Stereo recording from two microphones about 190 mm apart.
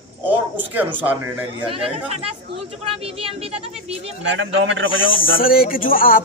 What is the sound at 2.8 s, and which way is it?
Speech, 30° right (ahead or behind).